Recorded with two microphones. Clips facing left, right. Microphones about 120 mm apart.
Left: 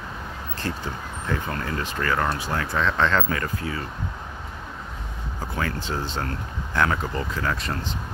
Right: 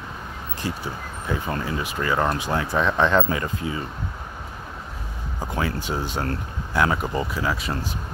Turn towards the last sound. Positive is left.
turn(degrees=-5)  # may be behind; listen again after turning